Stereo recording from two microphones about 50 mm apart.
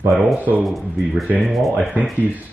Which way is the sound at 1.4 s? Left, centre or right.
Centre.